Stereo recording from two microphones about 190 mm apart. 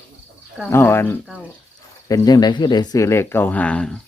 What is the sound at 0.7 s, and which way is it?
Speech, 10° left (ahead or behind).